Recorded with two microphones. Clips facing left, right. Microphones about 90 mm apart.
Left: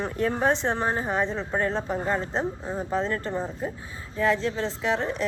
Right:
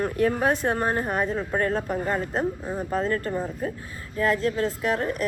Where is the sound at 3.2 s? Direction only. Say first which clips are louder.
Right 1 dB; 25° left (ahead or behind).